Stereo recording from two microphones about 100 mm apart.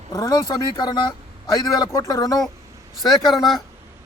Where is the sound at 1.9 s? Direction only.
30° left (ahead or behind).